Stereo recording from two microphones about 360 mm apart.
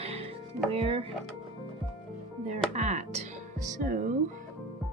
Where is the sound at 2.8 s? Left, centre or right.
Centre.